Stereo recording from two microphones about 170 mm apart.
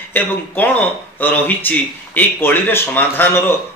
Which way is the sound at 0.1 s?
10° left (ahead or behind).